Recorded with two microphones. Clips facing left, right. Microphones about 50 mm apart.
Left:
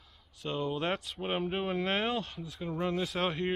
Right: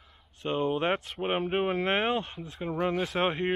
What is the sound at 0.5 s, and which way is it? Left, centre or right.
Speech, right.